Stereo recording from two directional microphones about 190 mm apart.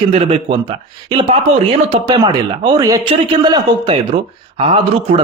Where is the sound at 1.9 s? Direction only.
25° right (ahead or behind).